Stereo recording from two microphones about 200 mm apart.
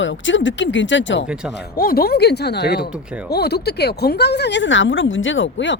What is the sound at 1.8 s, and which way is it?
Speech, 50° left (ahead or behind).